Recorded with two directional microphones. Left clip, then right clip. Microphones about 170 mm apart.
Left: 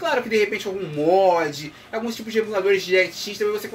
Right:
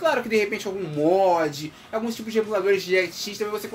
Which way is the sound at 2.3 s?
40° right (ahead or behind).